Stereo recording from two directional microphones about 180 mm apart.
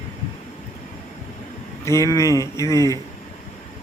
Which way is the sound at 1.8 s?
15° left (ahead or behind).